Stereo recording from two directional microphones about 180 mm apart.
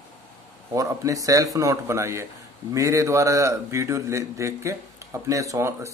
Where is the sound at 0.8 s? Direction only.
20° right (ahead or behind).